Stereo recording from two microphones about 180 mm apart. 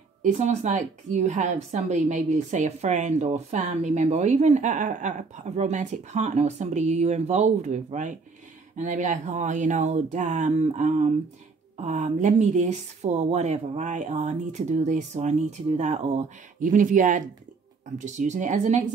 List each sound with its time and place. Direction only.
0.2 s a woman's voice: 40° right (ahead or behind)